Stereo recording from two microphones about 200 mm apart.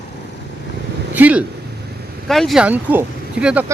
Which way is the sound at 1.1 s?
10° right (ahead or behind).